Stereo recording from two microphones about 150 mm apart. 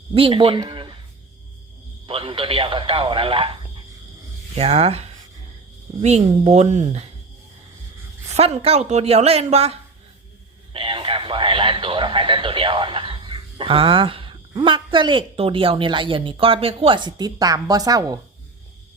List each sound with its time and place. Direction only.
0.1 s speech: 35° right (ahead or behind)
2.0 s a woman's voice: 40° right (ahead or behind)
8.4 s a woman's voice: 45° right (ahead or behind); by 18.2 s 25° right (ahead or behind)